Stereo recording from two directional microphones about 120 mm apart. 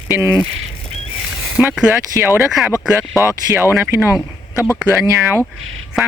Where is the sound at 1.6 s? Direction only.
20° right (ahead or behind).